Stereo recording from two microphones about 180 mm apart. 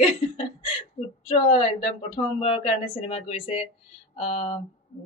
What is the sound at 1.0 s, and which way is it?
Speech, 35° left (ahead or behind).